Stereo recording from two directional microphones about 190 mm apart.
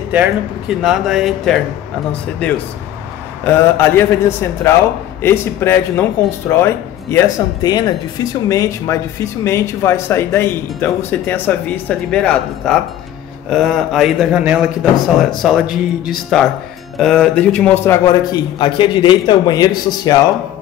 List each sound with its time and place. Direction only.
0.1 s speech: 5° right (ahead or behind)
3.4 s a man's voice: 10° left (ahead or behind)